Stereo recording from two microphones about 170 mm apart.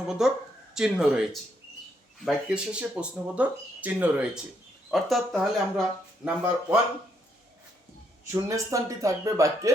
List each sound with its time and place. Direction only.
0.2 s speech: 5° right (ahead or behind)
6.2 s speech: 10° right (ahead or behind)
8.3 s speech: 20° right (ahead or behind)